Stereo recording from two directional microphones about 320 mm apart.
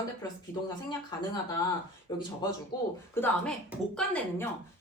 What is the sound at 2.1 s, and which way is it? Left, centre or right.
A woman's voice, centre.